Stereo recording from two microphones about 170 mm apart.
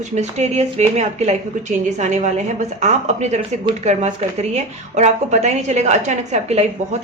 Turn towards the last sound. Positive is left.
turn(degrees=-40)  # may be behind; listen again after turning